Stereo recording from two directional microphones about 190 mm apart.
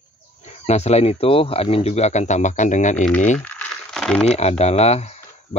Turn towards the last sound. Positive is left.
turn(degrees=35)  # may be behind; listen again after turning